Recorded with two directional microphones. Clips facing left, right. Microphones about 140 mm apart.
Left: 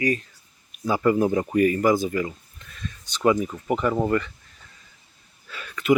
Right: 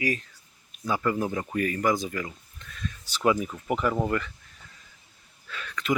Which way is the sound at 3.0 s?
5° right (ahead or behind).